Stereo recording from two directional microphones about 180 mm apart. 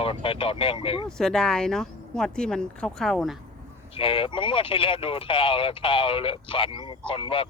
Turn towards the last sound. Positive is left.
turn(degrees=30)  # may be behind; listen again after turning